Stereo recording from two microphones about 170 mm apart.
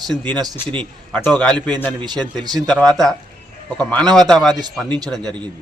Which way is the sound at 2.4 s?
25° right (ahead or behind).